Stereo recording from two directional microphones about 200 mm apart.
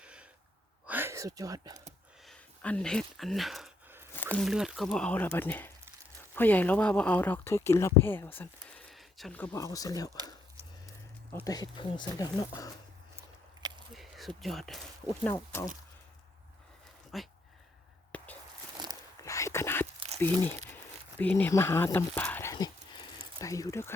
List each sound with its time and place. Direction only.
0.0 s gasp: 5° right (ahead or behind)
0.9 s speech: 10° right (ahead or behind)
2.2 s a sound: 5° left (ahead or behind)
4.1 s speech: 10° left (ahead or behind)
11.4 s speech: 20° left (ahead or behind)
13.1 s biting: 20° right (ahead or behind)
13.9 s speech: centre (ahead or behind)
15.3 s speech: 15° left (ahead or behind)
17.1 s speech: centre (ahead or behind)
18.1 s a sound: 5° left (ahead or behind)
20.2 s speech: 10° left (ahead or behind)